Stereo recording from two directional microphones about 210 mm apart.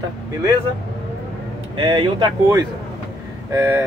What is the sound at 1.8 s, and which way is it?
Speech, 20° right (ahead or behind).